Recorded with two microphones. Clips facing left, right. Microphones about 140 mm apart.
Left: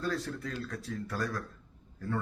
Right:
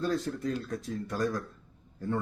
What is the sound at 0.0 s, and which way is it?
Speech, 20° right (ahead or behind).